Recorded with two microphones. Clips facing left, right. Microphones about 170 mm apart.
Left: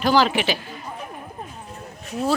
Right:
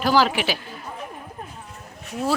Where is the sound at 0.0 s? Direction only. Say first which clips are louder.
Left 1 dB; 5° right (ahead or behind).